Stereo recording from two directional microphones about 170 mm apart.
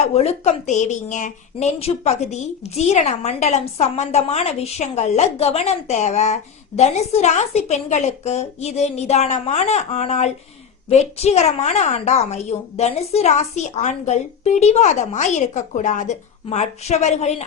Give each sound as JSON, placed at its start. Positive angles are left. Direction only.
{"t": 0.0, "sound": "a woman's voice", "side_deg": 35}